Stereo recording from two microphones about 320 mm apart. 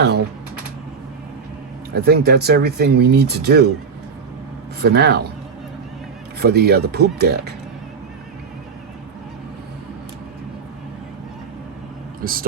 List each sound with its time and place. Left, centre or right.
2.0 s speech: right
4.8 s speech: right
6.4 s speech: right
12.2 s speech: right